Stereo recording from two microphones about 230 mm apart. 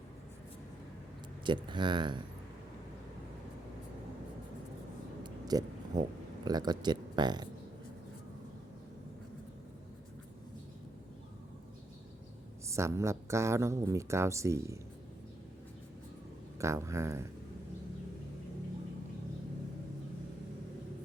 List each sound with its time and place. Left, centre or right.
1.6 s speech: centre
5.2 s a sound: centre
12.6 s speech: centre
16.6 s speech: centre